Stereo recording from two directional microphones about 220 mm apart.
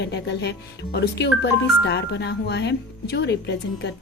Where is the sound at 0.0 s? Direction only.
50° left (ahead or behind).